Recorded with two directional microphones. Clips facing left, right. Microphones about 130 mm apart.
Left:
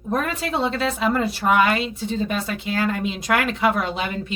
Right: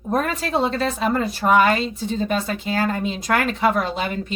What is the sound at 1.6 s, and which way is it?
Speech, 35° right (ahead or behind).